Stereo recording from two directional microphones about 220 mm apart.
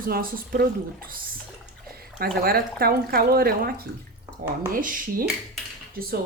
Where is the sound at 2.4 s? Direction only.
45° right (ahead or behind).